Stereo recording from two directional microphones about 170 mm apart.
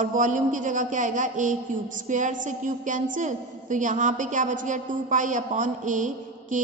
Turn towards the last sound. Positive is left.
turn(degrees=-50)  # may be behind; listen again after turning